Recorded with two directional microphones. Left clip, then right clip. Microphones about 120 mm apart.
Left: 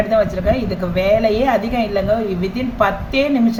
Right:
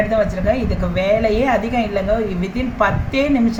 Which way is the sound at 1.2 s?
30° left (ahead or behind).